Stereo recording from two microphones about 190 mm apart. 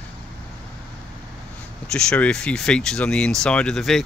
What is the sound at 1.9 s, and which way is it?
Speech, 5° left (ahead or behind).